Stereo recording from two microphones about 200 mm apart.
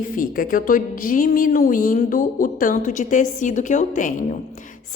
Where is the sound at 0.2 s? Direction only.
45° left (ahead or behind).